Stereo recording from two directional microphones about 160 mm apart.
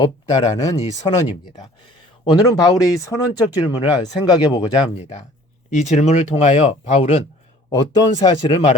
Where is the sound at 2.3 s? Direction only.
25° left (ahead or behind).